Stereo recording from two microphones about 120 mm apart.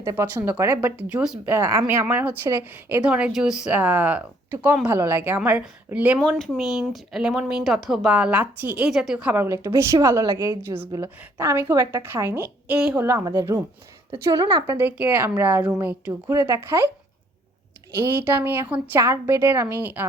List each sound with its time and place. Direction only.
0.0 s a woman's voice: 25° right (ahead or behind)
0.8 s speech: 10° right (ahead or behind)
1.5 s a woman's voice: 20° right (ahead or behind)
6.1 s a woman's voice: 5° left (ahead or behind)
13.0 s a woman's voice: 20° right (ahead or behind); by 14.8 s 35° right (ahead or behind)
14.8 s speech: 15° right (ahead or behind)
16.3 s a woman's voice: 25° right (ahead or behind)
18.0 s a woman's voice: 20° right (ahead or behind)